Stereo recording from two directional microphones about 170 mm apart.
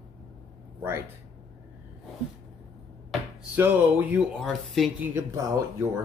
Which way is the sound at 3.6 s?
10° right (ahead or behind).